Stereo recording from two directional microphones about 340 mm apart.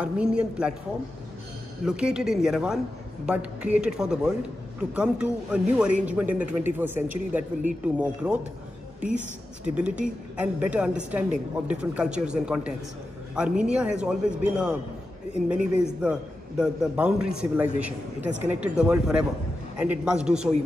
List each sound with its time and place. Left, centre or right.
0.0 s a man's voice: centre
1.9 s a man's voice: centre
9.8 s a man's voice: centre